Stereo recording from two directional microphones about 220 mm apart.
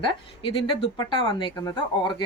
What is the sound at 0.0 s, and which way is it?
Speech, 25° left (ahead or behind).